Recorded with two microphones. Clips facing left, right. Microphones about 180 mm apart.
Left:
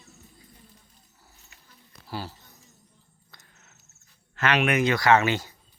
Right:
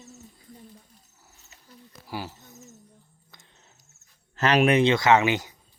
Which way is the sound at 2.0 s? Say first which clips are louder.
Right 1 dB; 15° right (ahead or behind).